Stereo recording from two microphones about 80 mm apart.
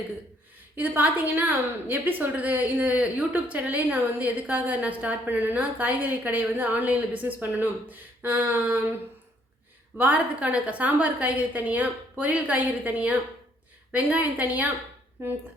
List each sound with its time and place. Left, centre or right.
0.8 s a woman's voice: right
10.0 s a woman's voice: centre